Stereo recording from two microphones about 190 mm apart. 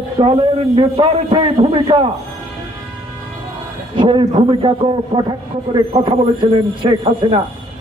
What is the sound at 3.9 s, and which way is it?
Speech, 25° right (ahead or behind).